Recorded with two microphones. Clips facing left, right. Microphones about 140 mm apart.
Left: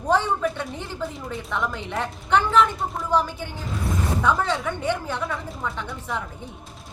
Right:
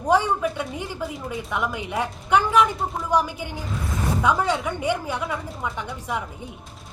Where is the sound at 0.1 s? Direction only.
10° right (ahead or behind).